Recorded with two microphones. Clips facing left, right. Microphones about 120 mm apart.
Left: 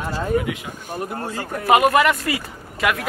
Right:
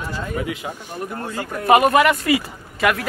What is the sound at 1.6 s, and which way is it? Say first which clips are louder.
Speech: right 1 dB; centre (ahead or behind).